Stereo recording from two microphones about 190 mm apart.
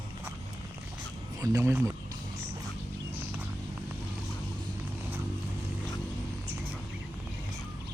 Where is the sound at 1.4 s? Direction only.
15° right (ahead or behind).